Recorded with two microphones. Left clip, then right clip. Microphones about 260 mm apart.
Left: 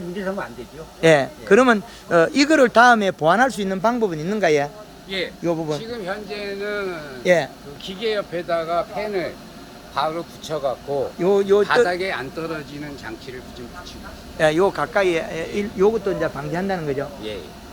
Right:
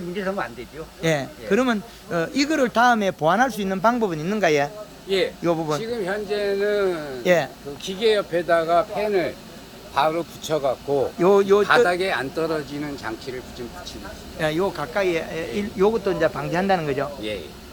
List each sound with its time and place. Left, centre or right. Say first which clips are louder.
1.0 s speech: left 8 dB; centre
5.0 s a man's voice: right 4 dB; right
5.4 s speech: right 1 dB; centre
5.9 s speech: right 3 dB; right
7.3 s speech: left 2 dB; centre
7.9 s speech: right 4 dB; right
11.2 s speech: even; centre
11.9 s speech: right 1 dB; right
14.3 s speech: left 6 dB; centre